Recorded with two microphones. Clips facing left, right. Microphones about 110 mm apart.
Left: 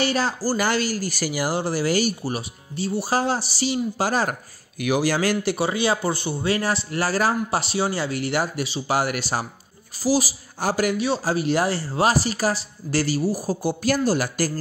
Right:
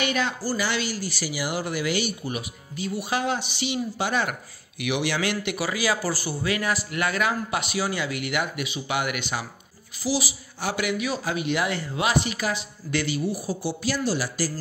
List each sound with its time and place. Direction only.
0.0 s a woman's voice: 35° left (ahead or behind)
1.5 s speech: 35° left (ahead or behind); by 14.5 s 50° left (ahead or behind)